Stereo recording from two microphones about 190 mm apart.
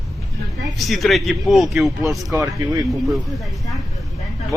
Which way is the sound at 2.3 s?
15° right (ahead or behind).